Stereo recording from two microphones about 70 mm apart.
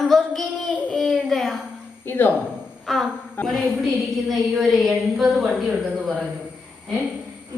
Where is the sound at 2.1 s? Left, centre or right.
Left.